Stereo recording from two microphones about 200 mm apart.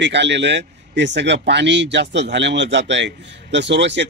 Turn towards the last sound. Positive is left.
turn(degrees=-60)  # may be behind; listen again after turning